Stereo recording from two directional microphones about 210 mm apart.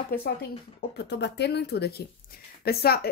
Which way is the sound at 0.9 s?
55° left (ahead or behind).